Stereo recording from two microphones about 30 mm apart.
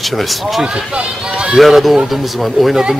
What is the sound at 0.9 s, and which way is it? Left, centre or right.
Speech, right.